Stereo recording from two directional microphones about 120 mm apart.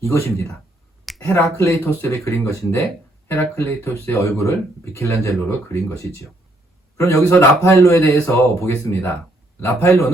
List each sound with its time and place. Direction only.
0.1 s speech: 25° left (ahead or behind)
1.1 s a sound: centre (ahead or behind)
1.5 s speech: 25° left (ahead or behind)